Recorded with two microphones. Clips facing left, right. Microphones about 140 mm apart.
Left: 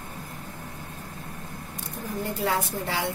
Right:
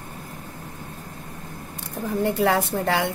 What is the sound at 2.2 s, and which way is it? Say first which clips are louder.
Speech: right 6 dB; 70° right (ahead or behind).